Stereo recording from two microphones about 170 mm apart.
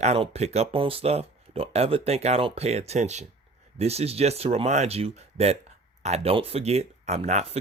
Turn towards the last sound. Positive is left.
turn(degrees=-40)  # may be behind; listen again after turning